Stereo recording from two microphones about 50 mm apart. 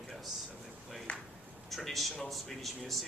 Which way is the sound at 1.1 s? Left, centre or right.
Left.